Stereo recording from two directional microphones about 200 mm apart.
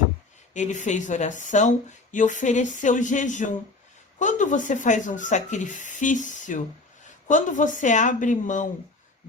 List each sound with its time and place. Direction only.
0.5 s speech: 35° left (ahead or behind)